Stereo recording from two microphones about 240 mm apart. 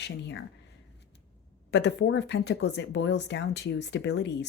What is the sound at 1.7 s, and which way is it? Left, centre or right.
Speech, left.